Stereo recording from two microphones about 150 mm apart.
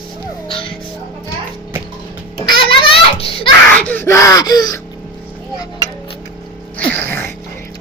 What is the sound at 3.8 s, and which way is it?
Gasp, 10° left (ahead or behind).